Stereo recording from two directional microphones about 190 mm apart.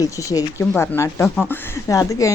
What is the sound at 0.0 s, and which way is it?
Speech, 20° left (ahead or behind).